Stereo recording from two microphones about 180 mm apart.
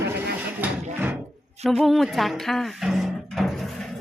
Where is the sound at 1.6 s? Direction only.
Centre (ahead or behind).